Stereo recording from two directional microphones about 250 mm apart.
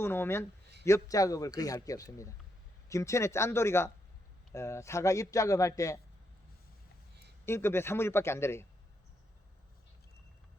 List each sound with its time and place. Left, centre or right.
0.0 s a man's voice: centre
7.4 s a man's voice: centre